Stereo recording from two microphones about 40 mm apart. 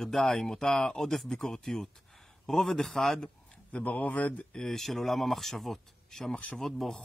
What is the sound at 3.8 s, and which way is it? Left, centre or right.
Speech, left.